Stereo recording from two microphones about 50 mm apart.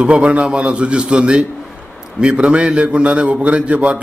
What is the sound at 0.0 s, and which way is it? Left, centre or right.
A man's voice, right.